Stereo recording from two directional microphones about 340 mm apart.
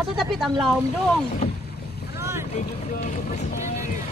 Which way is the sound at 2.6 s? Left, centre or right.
Left.